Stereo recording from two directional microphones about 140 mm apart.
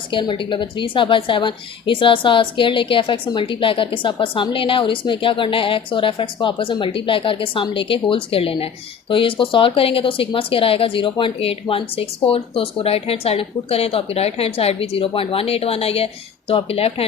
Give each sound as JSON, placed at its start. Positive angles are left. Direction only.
{"t": 0.1, "sound": "a woman's voice", "side_deg": 35}